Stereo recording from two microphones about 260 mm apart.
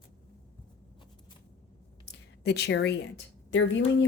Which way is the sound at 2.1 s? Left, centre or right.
Left.